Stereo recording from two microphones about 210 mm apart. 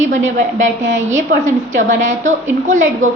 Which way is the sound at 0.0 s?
35° right (ahead or behind).